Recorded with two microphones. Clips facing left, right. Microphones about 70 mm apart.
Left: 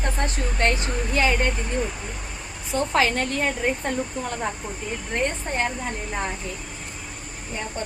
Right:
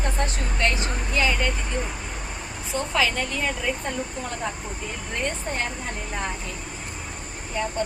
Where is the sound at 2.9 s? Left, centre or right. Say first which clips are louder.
Left 2 dB; left.